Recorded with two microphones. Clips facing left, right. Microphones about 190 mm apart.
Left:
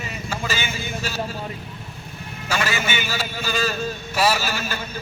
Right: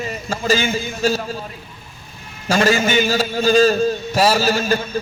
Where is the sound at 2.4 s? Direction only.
40° right (ahead or behind).